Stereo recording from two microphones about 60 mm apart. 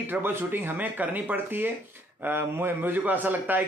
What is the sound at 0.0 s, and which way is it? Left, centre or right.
A man's voice, right.